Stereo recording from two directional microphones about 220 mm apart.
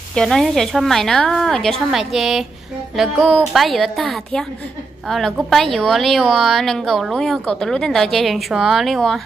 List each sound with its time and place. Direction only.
0.1 s a woman's voice: centre (ahead or behind)